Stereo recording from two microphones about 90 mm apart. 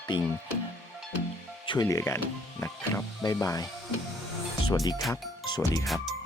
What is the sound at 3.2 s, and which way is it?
Speech, 45° left (ahead or behind).